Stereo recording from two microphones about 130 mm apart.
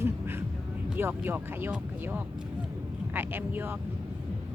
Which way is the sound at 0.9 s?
15° right (ahead or behind).